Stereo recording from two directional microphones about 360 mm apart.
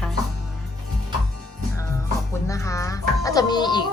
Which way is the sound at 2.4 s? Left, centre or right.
Centre.